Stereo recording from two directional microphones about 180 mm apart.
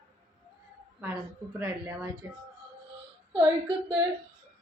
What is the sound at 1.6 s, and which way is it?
Speech, 15° right (ahead or behind).